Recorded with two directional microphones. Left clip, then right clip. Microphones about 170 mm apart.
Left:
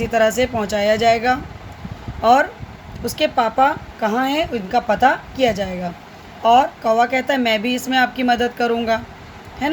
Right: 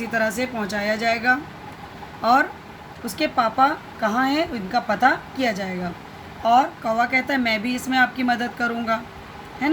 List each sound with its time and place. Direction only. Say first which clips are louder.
0.1 s a woman's voice: left 6 dB; 40° left (ahead or behind)